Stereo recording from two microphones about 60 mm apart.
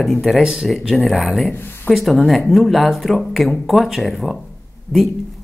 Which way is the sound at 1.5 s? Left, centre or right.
Left.